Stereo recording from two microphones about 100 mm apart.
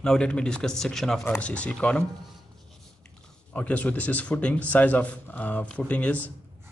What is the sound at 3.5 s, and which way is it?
Speech, 15° left (ahead or behind).